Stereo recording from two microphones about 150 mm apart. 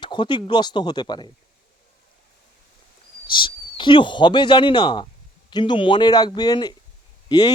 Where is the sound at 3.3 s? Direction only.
30° left (ahead or behind).